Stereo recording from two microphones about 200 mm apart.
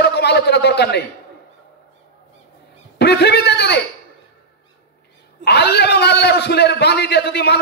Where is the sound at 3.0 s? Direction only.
55° left (ahead or behind).